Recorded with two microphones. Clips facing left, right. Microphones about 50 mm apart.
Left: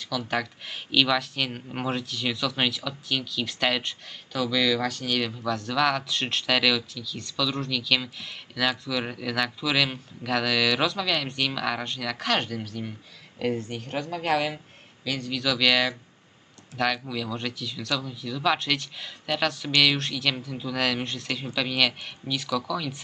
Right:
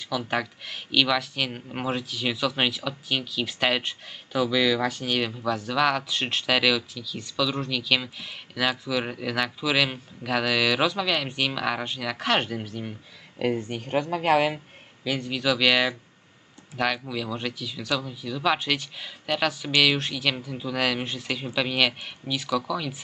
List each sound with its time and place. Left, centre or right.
0.0 s speech: centre
0.6 s speech: centre